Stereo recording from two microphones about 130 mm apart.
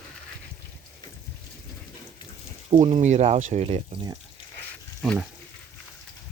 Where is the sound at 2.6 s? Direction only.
55° right (ahead or behind).